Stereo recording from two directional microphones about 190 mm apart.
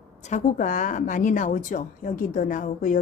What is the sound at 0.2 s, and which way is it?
A woman's voice, 40° left (ahead or behind).